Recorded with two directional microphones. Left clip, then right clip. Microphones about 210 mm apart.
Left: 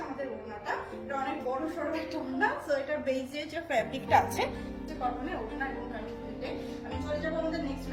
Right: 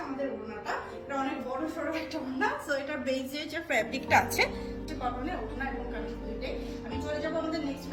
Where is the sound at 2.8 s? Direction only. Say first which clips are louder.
Left 1 dB; 20° right (ahead or behind).